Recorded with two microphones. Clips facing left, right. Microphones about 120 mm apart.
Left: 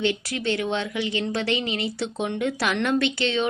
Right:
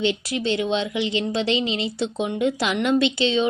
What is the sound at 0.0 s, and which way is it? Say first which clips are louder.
Speech: right 2 dB; 20° right (ahead or behind).